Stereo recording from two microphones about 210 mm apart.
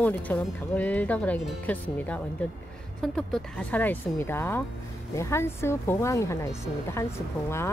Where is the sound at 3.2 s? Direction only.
5° left (ahead or behind).